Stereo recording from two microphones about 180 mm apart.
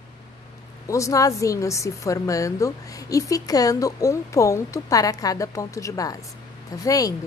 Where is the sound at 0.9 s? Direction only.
15° left (ahead or behind).